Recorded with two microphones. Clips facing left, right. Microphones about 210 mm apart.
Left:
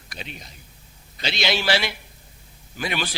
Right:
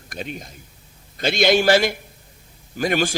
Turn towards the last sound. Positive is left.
turn(degrees=-45)  # may be behind; listen again after turning